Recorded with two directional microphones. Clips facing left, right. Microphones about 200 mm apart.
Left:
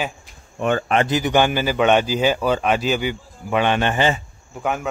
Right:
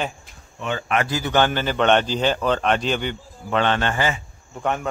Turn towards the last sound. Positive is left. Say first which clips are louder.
# even
turn(degrees=5)  # may be behind; listen again after turning